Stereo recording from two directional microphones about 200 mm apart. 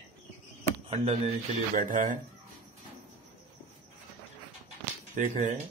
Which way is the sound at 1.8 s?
40° right (ahead or behind).